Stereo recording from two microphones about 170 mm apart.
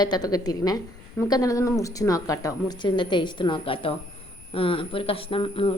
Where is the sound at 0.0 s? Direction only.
25° left (ahead or behind).